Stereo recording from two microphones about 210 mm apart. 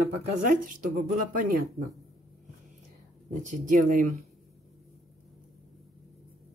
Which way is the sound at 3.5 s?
40° right (ahead or behind).